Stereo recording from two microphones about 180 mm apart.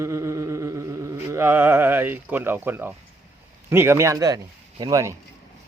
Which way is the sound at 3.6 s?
15° right (ahead or behind).